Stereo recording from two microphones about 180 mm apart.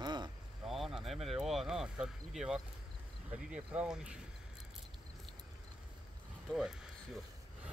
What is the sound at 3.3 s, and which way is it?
Speech, 5° right (ahead or behind).